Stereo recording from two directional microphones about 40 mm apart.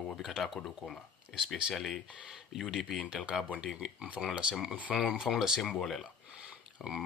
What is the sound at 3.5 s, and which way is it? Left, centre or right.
Speech, right.